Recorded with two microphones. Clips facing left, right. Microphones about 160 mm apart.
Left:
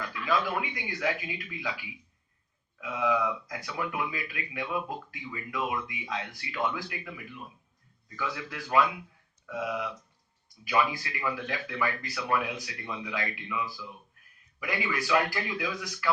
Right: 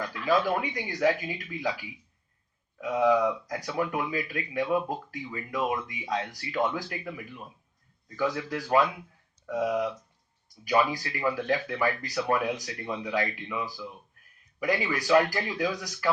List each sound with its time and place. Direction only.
0.0 s speech: 40° right (ahead or behind)